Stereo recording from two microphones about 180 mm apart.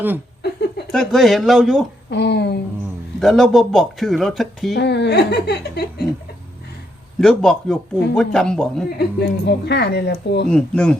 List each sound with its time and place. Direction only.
0.9 s speech: centre (ahead or behind)
2.0 s speech: 70° left (ahead or behind)
3.2 s speech: centre (ahead or behind)
4.7 s speech: 75° left (ahead or behind)
7.2 s speech: centre (ahead or behind)
9.0 s speech: 70° left (ahead or behind)
10.5 s speech: 5° left (ahead or behind)